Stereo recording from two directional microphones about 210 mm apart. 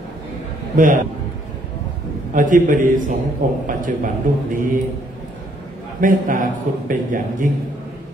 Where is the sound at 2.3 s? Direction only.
40° right (ahead or behind).